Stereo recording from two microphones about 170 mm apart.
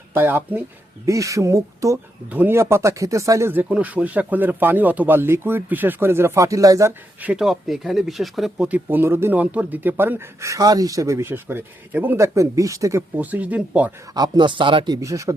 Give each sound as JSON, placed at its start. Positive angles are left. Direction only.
{"t": 0.1, "sound": "speech", "side_deg": -10}
{"t": 14.1, "sound": "speech", "side_deg": -25}
{"t": 15.0, "sound": "speech", "side_deg": -20}